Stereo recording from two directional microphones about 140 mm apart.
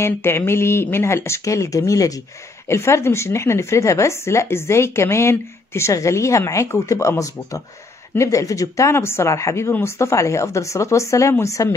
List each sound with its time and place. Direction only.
0.0 s speech: 20° left (ahead or behind)